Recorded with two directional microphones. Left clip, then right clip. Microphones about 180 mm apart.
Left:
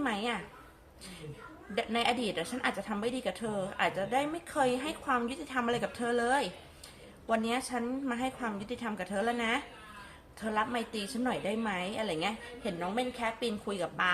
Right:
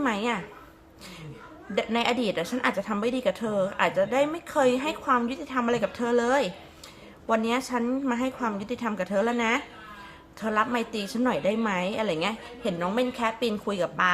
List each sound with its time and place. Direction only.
0.0 s a woman's voice: 25° right (ahead or behind)
1.7 s a woman's voice: 20° right (ahead or behind)